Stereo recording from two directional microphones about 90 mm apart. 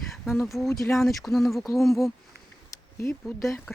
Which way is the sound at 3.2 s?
Centre (ahead or behind).